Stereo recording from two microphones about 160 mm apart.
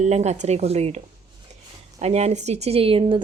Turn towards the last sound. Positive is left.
turn(degrees=-35)  # may be behind; listen again after turning